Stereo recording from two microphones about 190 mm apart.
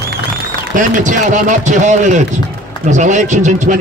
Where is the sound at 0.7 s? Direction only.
40° right (ahead or behind).